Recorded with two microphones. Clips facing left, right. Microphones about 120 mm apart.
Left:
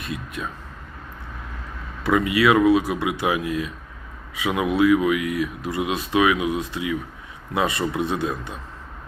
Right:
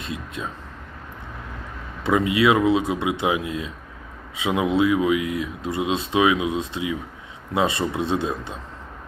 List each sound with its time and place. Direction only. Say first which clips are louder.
0.0 s speech: even; 25° right (ahead or behind)
2.0 s speech: even; 25° right (ahead or behind)